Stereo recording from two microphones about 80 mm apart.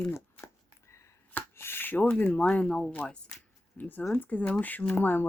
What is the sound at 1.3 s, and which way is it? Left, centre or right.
Chopping, left.